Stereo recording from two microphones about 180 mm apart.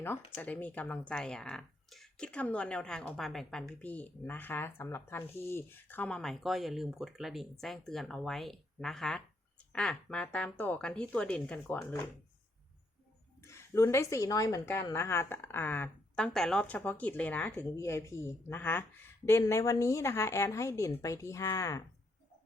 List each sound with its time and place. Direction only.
0.0 s speech: 10° left (ahead or behind)
13.4 s a woman's voice: 15° left (ahead or behind)